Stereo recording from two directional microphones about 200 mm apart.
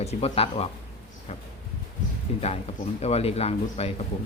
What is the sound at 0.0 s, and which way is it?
Speech, 30° left (ahead or behind).